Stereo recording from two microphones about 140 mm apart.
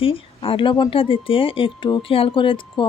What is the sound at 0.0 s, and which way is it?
Speech, 40° left (ahead or behind).